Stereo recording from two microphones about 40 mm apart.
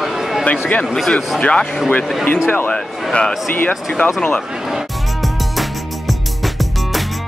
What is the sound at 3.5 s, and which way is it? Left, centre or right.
Speech, left.